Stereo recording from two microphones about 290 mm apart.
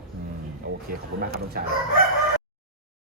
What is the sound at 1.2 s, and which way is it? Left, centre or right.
Speech, right.